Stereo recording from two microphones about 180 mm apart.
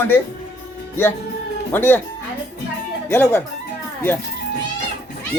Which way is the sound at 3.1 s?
10° left (ahead or behind).